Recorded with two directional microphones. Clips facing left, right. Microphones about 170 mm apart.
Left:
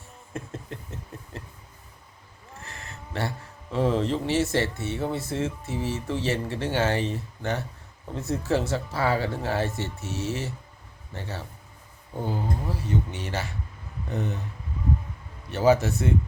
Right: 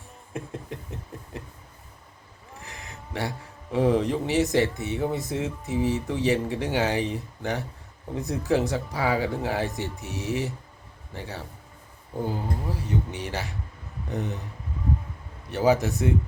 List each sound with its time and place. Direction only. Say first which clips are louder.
0.3 s speech: right 1 dB; 15° right (ahead or behind)
2.6 s speech: even; 15° right (ahead or behind)
12.9 s speech: left 1 dB; 15° right (ahead or behind)
15.4 s speech: left 1 dB; 15° right (ahead or behind)